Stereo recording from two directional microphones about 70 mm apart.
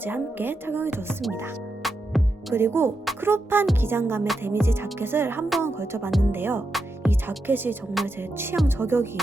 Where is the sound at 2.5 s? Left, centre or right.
Right.